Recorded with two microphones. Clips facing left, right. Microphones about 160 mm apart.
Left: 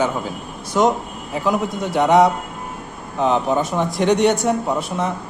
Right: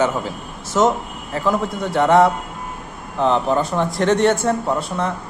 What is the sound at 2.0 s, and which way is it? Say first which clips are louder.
Speech: even; 15° left (ahead or behind).